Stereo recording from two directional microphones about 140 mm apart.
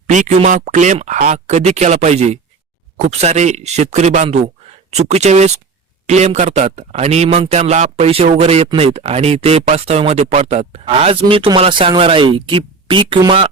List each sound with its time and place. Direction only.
0.1 s speech: 60° right (ahead or behind)
1.5 s speech: 50° right (ahead or behind)